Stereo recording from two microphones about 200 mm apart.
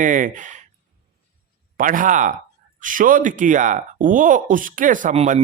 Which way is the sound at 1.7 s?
40° right (ahead or behind).